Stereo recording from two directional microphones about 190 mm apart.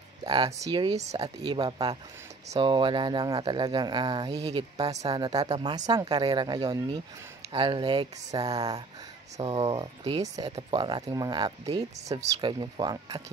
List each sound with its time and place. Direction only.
0.2 s speech: 20° right (ahead or behind)
9.4 s speech: 30° right (ahead or behind)